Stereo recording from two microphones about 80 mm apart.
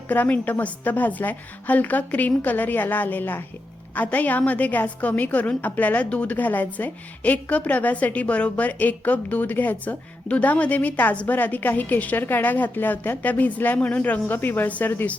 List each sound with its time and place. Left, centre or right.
0.1 s a woman's voice: left